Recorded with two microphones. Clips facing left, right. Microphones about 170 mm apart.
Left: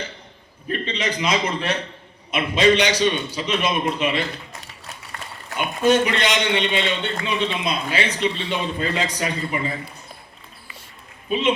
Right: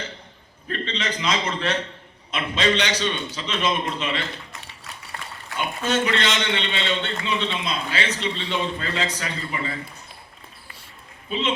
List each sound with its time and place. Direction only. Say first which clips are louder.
0.7 s a man's voice: left 3 dB; 10° left (ahead or behind)
5.5 s a man's voice: left 6 dB; 15° left (ahead or behind)
11.3 s a man's voice: left 5 dB; 15° left (ahead or behind)